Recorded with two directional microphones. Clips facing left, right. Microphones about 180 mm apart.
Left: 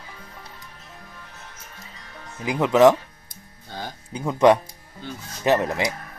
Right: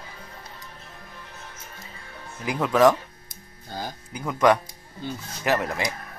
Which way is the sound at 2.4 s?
20° left (ahead or behind).